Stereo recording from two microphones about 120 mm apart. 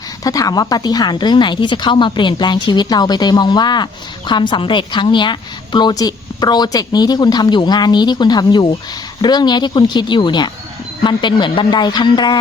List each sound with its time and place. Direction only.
0.3 s a woman's voice: 30° left (ahead or behind)